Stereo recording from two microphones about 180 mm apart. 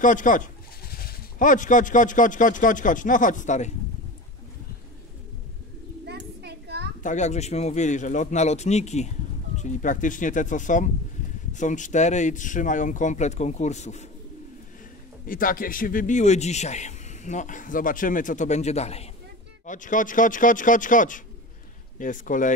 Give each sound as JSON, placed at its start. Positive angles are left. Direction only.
{"t": 0.0, "sound": "a man's voice", "side_deg": 45}
{"t": 6.0, "sound": "a sound", "side_deg": -70}
{"t": 7.0, "sound": "a man's voice", "side_deg": 40}
{"t": 15.2, "sound": "a man's voice", "side_deg": 50}